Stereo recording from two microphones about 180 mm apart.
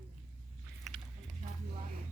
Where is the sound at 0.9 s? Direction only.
Centre (ahead or behind).